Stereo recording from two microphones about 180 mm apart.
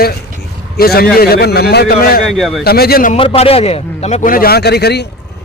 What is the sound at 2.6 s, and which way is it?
Speech, 60° left (ahead or behind).